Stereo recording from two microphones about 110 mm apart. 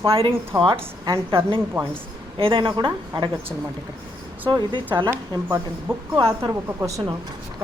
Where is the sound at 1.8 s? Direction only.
20° right (ahead or behind).